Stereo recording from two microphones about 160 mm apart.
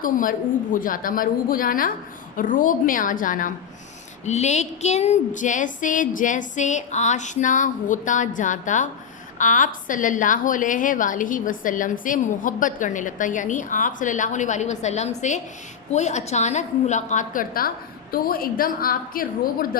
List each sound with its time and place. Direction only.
0.0 s a woman's voice: 60° left (ahead or behind)
4.3 s a woman's voice: 45° left (ahead or behind); by 19.8 s 65° left (ahead or behind)